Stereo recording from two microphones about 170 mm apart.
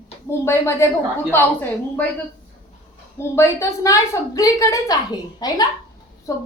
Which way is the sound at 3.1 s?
15° left (ahead or behind).